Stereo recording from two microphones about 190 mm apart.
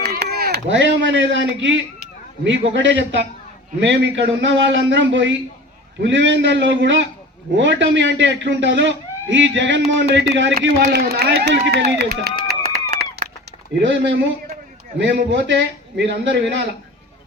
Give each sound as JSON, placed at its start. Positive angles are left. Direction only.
{"t": 0.0, "sound": "a man's voice", "side_deg": -55}
{"t": 10.9, "sound": "speech", "side_deg": -55}
{"t": 13.8, "sound": "a man's voice", "side_deg": -70}